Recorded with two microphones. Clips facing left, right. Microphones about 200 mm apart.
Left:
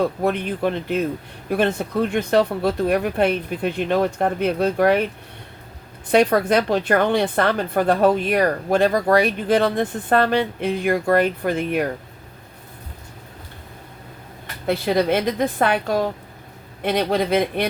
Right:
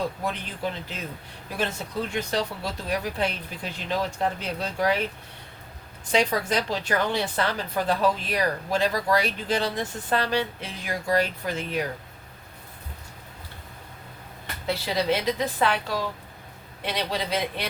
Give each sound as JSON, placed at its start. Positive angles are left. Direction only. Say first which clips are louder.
{"t": 0.0, "sound": "a woman's voice", "louder": "left 9 dB", "side_deg": 60}
{"t": 6.1, "sound": "a woman's voice", "louder": "left 8 dB", "side_deg": 60}
{"t": 14.7, "sound": "a woman's voice", "louder": "left 6 dB", "side_deg": 55}